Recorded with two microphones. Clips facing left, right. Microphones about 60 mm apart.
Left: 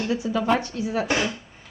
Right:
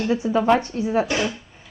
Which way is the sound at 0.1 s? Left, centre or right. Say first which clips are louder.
Right 5 dB; right.